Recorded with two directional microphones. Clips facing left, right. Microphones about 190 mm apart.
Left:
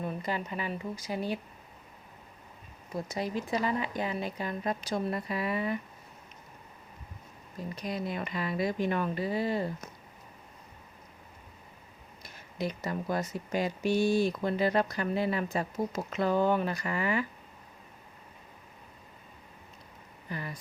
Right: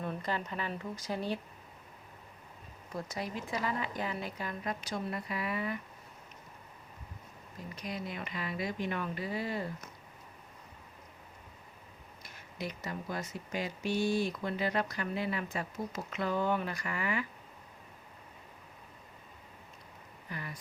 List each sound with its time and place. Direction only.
0.0 s speech: 10° left (ahead or behind)
3.1 s speech: 25° left (ahead or behind)
7.9 s speech: 35° left (ahead or behind)
12.5 s speech: 30° left (ahead or behind)
12.9 s speech: 45° left (ahead or behind)
20.3 s speech: 30° left (ahead or behind)